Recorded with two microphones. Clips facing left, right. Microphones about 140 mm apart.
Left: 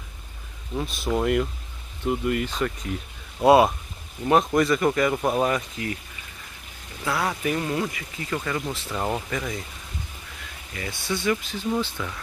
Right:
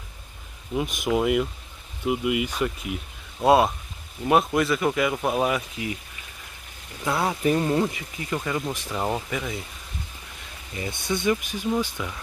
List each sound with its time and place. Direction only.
0.7 s speech: 15° right (ahead or behind)
3.3 s speech: centre (ahead or behind)
7.1 s speech: 20° right (ahead or behind); by 9.7 s 5° right (ahead or behind)
10.7 s speech: 20° right (ahead or behind)